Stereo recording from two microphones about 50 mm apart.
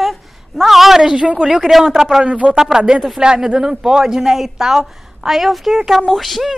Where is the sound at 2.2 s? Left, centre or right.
Right.